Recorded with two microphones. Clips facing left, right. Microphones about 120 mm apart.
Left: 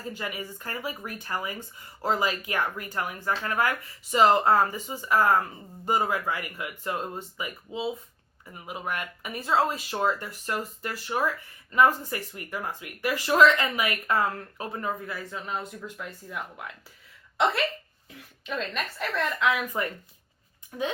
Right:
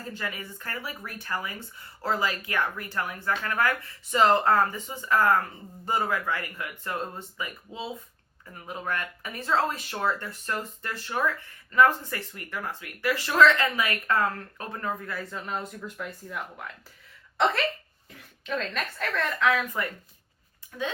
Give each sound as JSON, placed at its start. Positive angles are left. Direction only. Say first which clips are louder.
{"t": 0.1, "sound": "speech", "louder": "left 1 dB", "side_deg": 15}
{"t": 8.5, "sound": "speech", "louder": "right 1 dB", "side_deg": 15}